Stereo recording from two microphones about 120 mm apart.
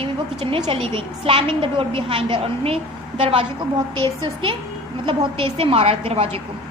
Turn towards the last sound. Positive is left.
turn(degrees=-55)  # may be behind; listen again after turning